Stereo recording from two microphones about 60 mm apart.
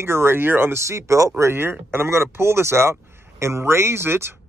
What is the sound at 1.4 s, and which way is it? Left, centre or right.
Speech, right.